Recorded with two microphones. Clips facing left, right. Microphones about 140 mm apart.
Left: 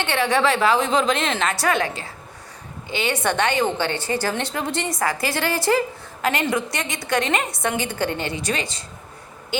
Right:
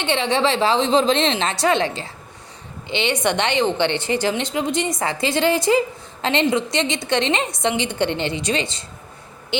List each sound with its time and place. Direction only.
0.0 s a woman's voice: 20° right (ahead or behind)